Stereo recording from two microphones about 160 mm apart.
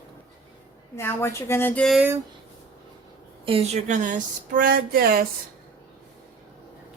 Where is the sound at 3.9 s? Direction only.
55° right (ahead or behind); by 5.2 s 70° right (ahead or behind).